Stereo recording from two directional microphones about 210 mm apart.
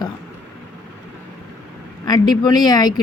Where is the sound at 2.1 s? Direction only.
20° left (ahead or behind).